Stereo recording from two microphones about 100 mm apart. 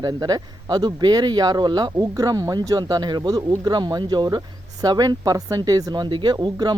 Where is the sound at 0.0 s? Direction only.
40° right (ahead or behind).